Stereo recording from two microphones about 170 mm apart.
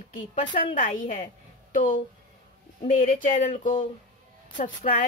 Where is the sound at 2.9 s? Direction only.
50° left (ahead or behind).